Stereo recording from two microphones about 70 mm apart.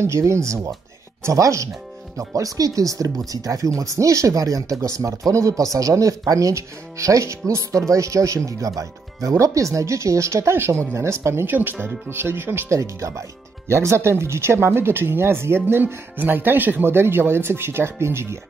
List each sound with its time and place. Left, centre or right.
0.0 s speech: right
12.7 s speech: right